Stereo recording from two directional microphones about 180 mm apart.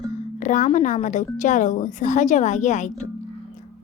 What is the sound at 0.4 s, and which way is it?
A woman's voice, 45° left (ahead or behind).